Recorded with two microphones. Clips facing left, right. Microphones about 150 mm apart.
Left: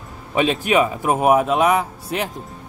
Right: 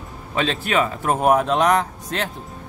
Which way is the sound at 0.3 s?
15° left (ahead or behind).